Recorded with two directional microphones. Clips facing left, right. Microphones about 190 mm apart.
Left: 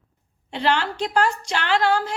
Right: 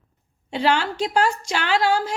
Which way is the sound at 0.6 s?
10° right (ahead or behind).